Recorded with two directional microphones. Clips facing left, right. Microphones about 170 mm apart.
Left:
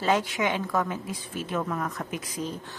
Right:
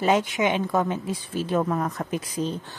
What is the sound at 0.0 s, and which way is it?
A woman's voice, 20° right (ahead or behind).